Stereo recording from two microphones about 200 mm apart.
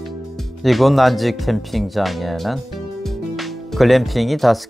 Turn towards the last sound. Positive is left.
turn(degrees=0)  # may be behind; listen again after turning